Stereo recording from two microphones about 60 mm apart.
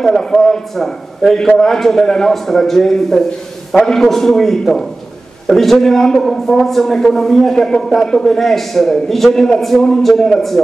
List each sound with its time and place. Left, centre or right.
0.0 s a man's voice: centre